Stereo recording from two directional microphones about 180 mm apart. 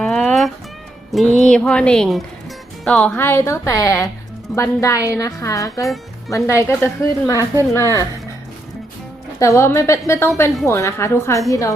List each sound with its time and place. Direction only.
0.0 s music: 5° left (ahead or behind)
1.1 s a woman's voice: centre (ahead or behind); by 8.0 s 15° left (ahead or behind)
9.4 s a woman's voice: 15° left (ahead or behind)